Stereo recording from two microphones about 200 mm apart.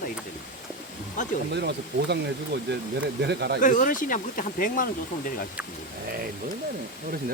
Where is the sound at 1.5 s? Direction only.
55° right (ahead or behind).